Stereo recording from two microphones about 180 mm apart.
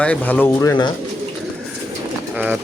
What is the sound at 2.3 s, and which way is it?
Bird, 10° right (ahead or behind).